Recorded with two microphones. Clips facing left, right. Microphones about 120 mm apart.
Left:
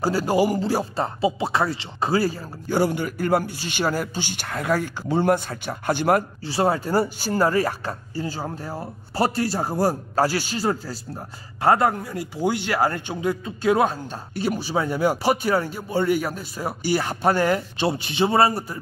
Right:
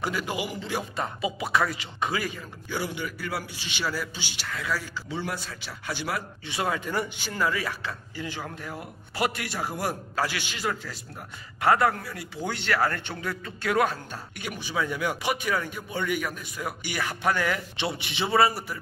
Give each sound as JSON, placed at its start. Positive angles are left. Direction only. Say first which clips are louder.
{"t": 0.0, "sound": "speech", "louder": "left 10 dB", "side_deg": 35}
{"t": 6.4, "sound": "speech", "louder": "left 7 dB", "side_deg": 35}
{"t": 11.6, "sound": "speech", "louder": "left 3 dB", "side_deg": 25}
{"t": 14.4, "sound": "speech", "louder": "left 7 dB", "side_deg": 35}